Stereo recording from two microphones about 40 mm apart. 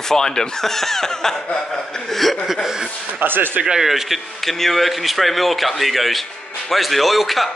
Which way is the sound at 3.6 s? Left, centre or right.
Centre.